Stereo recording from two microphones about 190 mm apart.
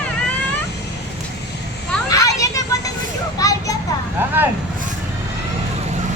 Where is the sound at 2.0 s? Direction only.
15° left (ahead or behind).